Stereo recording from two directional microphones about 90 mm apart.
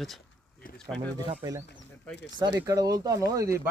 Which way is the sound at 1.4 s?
40° right (ahead or behind).